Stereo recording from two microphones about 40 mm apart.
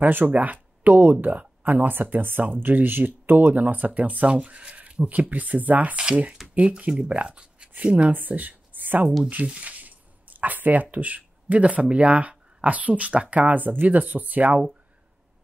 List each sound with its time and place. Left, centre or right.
0.0 s speech: right
6.4 s a sound: centre
6.9 s speech: right
8.1 s a woman's voice: right
9.6 s speech: right